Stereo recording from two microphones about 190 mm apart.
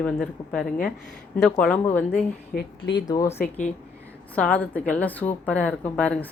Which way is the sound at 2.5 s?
70° left (ahead or behind).